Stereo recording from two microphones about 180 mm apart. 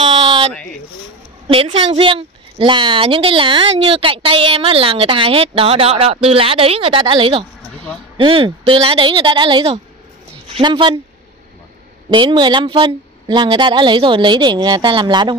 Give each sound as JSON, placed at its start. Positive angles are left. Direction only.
{"t": 0.0, "sound": "a sound", "side_deg": -30}
{"t": 0.5, "sound": "speech", "side_deg": 5}
{"t": 1.5, "sound": "a woman's voice", "side_deg": -30}
{"t": 12.1, "sound": "speech", "side_deg": -25}